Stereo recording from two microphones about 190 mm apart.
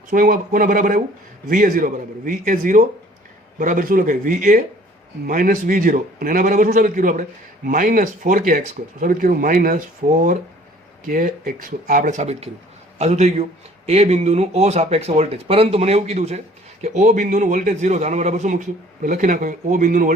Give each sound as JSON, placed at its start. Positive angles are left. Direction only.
{"t": 0.1, "sound": "a man's voice", "side_deg": -45}